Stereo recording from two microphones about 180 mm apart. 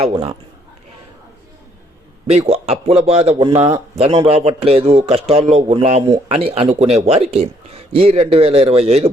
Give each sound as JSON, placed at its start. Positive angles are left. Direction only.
{"t": 0.1, "sound": "a man's voice", "side_deg": -20}
{"t": 2.2, "sound": "speech", "side_deg": -35}